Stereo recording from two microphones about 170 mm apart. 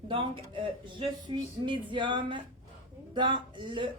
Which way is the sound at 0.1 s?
30° right (ahead or behind).